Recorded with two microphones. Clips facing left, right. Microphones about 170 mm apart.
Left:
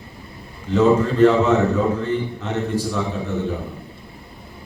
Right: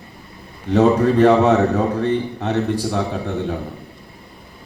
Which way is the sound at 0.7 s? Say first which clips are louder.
Right 2 dB; 65° right (ahead or behind).